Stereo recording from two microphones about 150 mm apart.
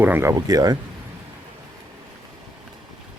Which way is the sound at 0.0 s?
15° right (ahead or behind).